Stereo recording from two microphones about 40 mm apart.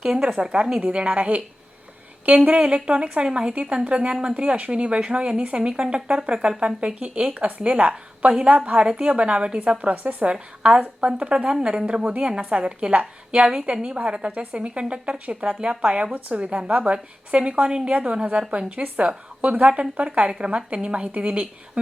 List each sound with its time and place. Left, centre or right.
0.0 s a woman's voice: centre
9.9 s a woman's voice: right
10.2 s speech: right
13.4 s a woman's voice: centre